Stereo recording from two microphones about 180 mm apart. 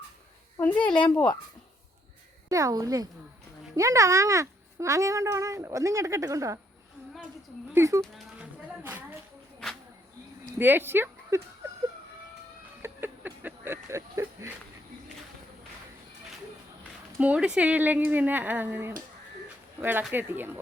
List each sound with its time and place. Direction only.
0.5 s a woman's voice: 15° left (ahead or behind)
2.5 s a woman's voice: 20° right (ahead or behind)
7.7 s a child's voice: 15° right (ahead or behind)
8.0 s a sound: centre (ahead or behind)
10.6 s speech: 10° right (ahead or behind)
12.8 s a sound: 10° right (ahead or behind)
17.2 s a child's voice: 5° right (ahead or behind)